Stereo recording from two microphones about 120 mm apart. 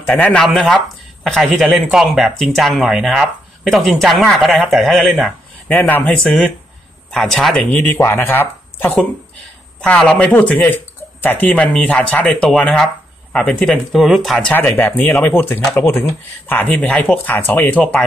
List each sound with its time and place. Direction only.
0.0 s speech: 15° left (ahead or behind)
5.7 s speech: 15° left (ahead or behind)
7.1 s speech: 5° left (ahead or behind)
7.7 s speech: 15° left (ahead or behind)
14.5 s speech: 15° left (ahead or behind)